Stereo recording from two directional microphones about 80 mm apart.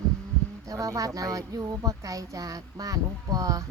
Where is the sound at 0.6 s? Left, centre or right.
Right.